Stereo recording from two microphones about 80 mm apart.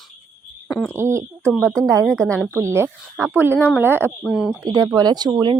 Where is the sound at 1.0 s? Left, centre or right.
Right.